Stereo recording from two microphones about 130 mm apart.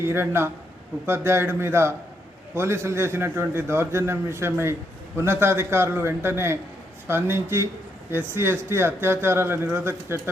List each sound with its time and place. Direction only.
0.0 s a man's voice: 20° right (ahead or behind)